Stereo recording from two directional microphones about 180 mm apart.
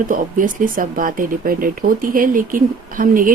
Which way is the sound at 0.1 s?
50° right (ahead or behind).